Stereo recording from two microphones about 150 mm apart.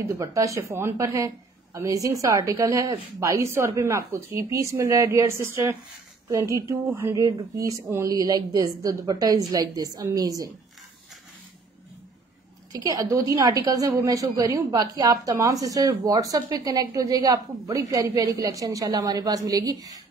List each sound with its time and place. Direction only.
0.1 s speech: 20° right (ahead or behind)
12.7 s speech: 25° right (ahead or behind)